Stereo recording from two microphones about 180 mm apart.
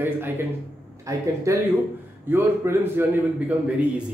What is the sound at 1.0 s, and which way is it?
A man's voice, 20° right (ahead or behind).